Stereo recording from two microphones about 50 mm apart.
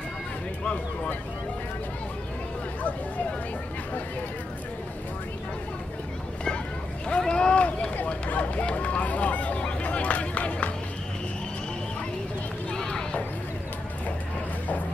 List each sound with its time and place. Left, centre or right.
7.1 s run: centre
8.3 s speech: left
12.7 s run: centre